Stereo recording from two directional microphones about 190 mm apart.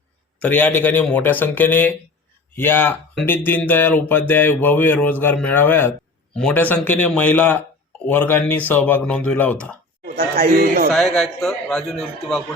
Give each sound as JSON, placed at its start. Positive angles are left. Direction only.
{"t": 0.3, "sound": "a man's voice", "side_deg": 10}
{"t": 10.2, "sound": "speech", "side_deg": -50}
{"t": 10.9, "sound": "a man's voice", "side_deg": 0}